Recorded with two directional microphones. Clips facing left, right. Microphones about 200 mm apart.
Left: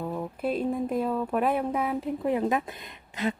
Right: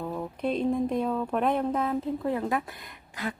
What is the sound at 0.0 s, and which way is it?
Speech, 5° left (ahead or behind).